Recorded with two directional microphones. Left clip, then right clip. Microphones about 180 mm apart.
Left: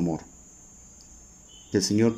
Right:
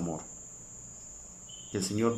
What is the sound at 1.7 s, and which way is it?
Speech, 30° left (ahead or behind).